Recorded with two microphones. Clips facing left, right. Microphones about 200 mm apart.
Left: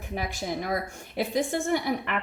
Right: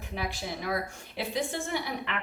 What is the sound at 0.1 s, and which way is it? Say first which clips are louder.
A woman's voice: left 4 dB; 45° left (ahead or behind).